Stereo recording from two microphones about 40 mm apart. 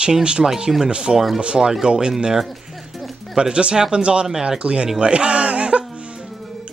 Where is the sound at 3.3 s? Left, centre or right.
Right.